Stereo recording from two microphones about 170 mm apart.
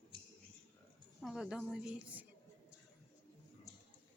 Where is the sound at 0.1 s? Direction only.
30° left (ahead or behind).